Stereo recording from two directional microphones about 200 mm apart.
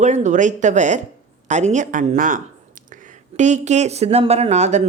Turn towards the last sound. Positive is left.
turn(degrees=-35)  # may be behind; listen again after turning